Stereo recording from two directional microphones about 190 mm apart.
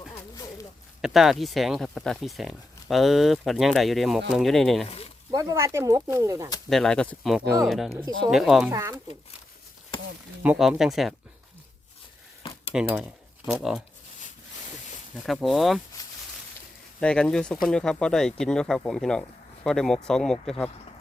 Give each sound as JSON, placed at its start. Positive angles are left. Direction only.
{"t": 1.0, "sound": "speech", "side_deg": 0}
{"t": 4.9, "sound": "a sound", "side_deg": 30}
{"t": 5.3, "sound": "speech", "side_deg": -20}
{"t": 6.7, "sound": "speech", "side_deg": 0}
{"t": 8.7, "sound": "speech", "side_deg": -15}
{"t": 10.4, "sound": "speech", "side_deg": -5}
{"t": 12.4, "sound": "cutlery", "side_deg": 25}
{"t": 12.7, "sound": "speech", "side_deg": -5}
{"t": 15.1, "sound": "speech", "side_deg": 0}
{"t": 17.0, "sound": "speech", "side_deg": 5}